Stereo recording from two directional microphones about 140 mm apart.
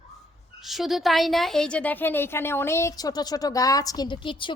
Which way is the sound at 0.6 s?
Centre (ahead or behind).